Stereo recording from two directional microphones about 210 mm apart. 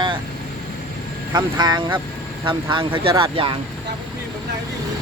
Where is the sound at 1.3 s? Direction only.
20° right (ahead or behind).